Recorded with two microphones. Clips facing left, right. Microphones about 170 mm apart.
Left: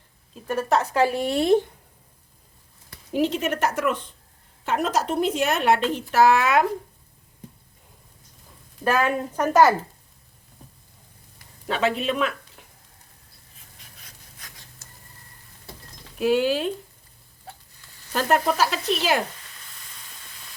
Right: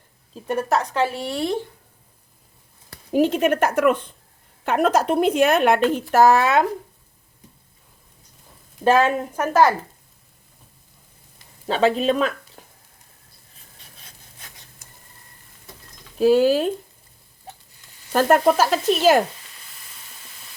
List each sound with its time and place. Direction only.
0.9 s speech: 15° left (ahead or behind)
3.1 s speech: 50° right (ahead or behind)
8.8 s a woman's voice: 25° right (ahead or behind)
9.3 s speech: 5° right (ahead or behind)
11.3 s speech: 30° right (ahead or behind)
14.3 s a sound: 25° right (ahead or behind)
16.1 s speech: 35° right (ahead or behind)
18.1 s sizzle: 50° right (ahead or behind)
18.5 s speech: 45° right (ahead or behind)